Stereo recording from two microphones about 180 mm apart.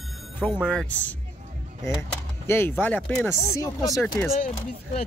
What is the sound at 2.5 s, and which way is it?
Speech, 10° left (ahead or behind).